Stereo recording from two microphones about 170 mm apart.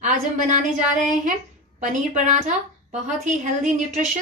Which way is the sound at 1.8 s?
45° right (ahead or behind).